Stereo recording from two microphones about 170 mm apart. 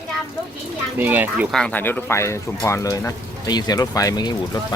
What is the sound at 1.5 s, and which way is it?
Speech, 5° left (ahead or behind).